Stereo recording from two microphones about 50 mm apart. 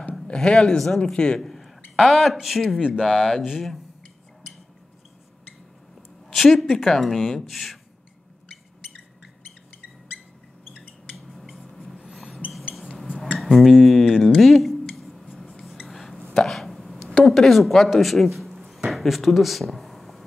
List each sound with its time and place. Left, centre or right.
0.3 s speech: centre
0.7 s speech: centre
1.1 s speech: centre
1.4 s a sound: centre
2.0 s speech: centre
6.3 s speech: centre
11.1 s a sound: centre
13.4 s speech: centre
15.0 s a sound: centre
17.3 s speech: centre
18.0 s a sound: centre
18.9 s speech: centre